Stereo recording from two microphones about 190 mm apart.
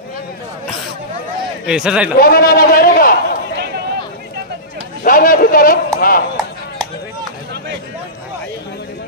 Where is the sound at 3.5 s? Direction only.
60° right (ahead or behind).